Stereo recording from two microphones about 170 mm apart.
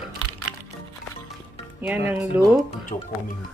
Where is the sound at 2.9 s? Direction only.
35° left (ahead or behind).